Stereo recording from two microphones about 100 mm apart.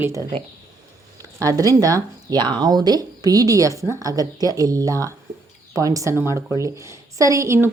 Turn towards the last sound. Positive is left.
turn(degrees=-30)  # may be behind; listen again after turning